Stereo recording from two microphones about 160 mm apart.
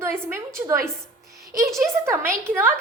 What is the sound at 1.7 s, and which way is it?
A woman's voice, 15° right (ahead or behind).